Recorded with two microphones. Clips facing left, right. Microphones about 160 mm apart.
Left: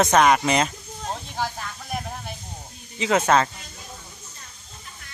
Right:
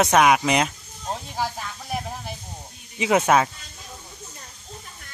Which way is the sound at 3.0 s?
15° right (ahead or behind).